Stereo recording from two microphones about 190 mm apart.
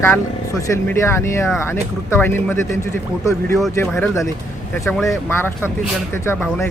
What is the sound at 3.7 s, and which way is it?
Speech, 15° left (ahead or behind).